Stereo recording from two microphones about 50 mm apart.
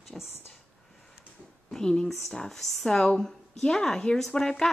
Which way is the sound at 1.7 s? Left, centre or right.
Centre.